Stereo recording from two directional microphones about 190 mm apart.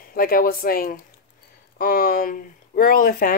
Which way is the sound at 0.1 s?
50° left (ahead or behind).